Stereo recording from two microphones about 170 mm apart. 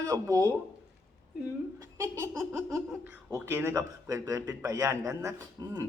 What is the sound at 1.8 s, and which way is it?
A man's voice, 15° right (ahead or behind).